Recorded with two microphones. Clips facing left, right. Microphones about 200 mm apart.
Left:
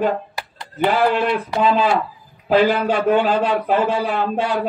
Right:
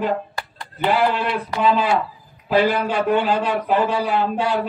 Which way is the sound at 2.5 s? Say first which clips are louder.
Left 2 dB; 45° left (ahead or behind).